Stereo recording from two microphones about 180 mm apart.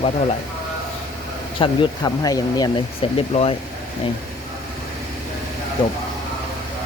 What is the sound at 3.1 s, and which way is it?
Speech, 35° left (ahead or behind).